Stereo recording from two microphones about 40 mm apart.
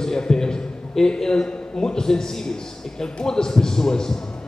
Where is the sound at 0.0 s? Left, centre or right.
Centre.